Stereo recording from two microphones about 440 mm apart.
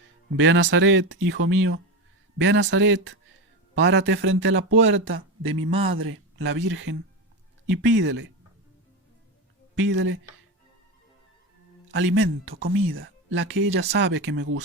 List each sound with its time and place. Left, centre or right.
0.3 s speech: right
9.8 s speech: right
11.9 s speech: right